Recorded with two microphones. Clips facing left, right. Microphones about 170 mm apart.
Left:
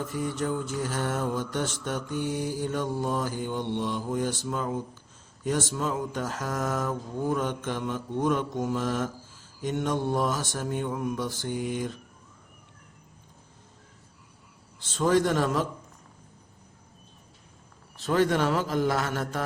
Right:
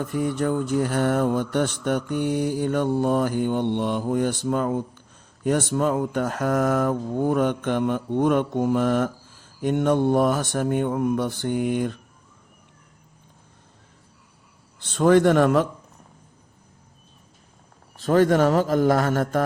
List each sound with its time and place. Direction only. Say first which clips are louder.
0.0 s mantra: right 6 dB; 60° right (ahead or behind)
14.8 s mantra: right 6 dB; 60° right (ahead or behind)
17.9 s a man's voice: right 6 dB; 45° right (ahead or behind)